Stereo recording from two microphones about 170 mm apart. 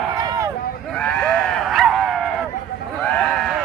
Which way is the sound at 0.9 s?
5° left (ahead or behind).